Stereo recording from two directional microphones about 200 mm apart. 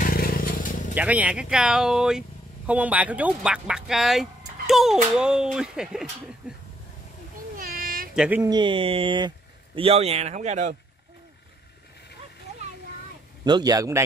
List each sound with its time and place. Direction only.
0.0 s vehicle: 45° left (ahead or behind)
0.9 s speech: 5° right (ahead or behind)
7.5 s cat: 45° right (ahead or behind)
8.1 s speech: 5° right (ahead or behind)
8.5 s speech: 25° right (ahead or behind)
13.4 s speech: 20° right (ahead or behind)